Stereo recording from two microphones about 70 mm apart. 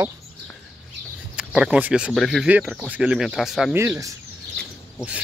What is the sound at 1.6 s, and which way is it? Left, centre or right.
Speech, centre.